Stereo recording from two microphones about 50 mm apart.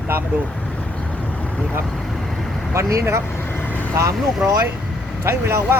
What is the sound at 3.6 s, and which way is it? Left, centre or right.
Vehicle, left.